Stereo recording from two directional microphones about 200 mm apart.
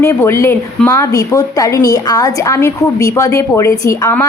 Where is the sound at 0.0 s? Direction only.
15° left (ahead or behind).